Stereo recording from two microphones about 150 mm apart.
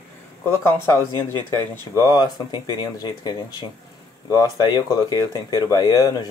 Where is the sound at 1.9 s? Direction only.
25° left (ahead or behind).